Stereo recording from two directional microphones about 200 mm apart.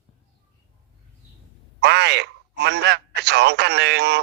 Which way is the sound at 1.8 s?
55° right (ahead or behind).